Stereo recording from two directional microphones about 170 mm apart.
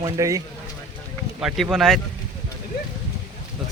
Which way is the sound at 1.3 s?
Centre (ahead or behind).